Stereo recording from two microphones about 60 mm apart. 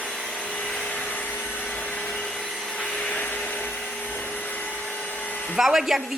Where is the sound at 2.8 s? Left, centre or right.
Centre.